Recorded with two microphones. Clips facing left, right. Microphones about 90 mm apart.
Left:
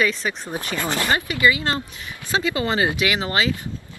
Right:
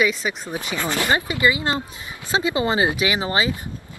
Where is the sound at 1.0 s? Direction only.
25° right (ahead or behind).